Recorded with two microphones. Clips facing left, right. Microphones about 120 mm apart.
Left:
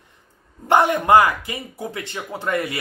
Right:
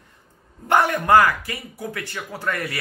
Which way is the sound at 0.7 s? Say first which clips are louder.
Left 2 dB; 20° left (ahead or behind).